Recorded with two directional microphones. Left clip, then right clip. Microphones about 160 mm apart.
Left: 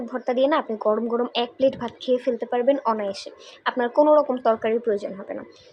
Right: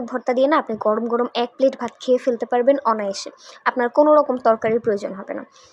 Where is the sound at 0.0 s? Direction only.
25° right (ahead or behind).